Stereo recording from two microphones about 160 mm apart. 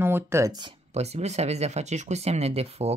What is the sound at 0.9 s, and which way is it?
Speech, 40° right (ahead or behind).